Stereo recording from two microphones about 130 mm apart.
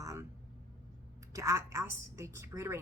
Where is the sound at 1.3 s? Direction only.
25° right (ahead or behind).